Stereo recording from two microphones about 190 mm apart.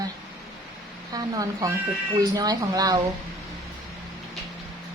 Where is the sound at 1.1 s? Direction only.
20° right (ahead or behind).